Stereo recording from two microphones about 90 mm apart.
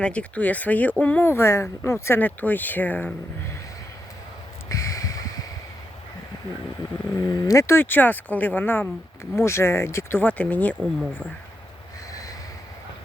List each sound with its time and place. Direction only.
0.0 s speech: 15° left (ahead or behind)
4.7 s a sound: 35° left (ahead or behind)
7.2 s speech: 45° left (ahead or behind); by 8.9 s 20° left (ahead or behind)
9.3 s speech: 30° left (ahead or behind)
10.2 s speech: 15° left (ahead or behind)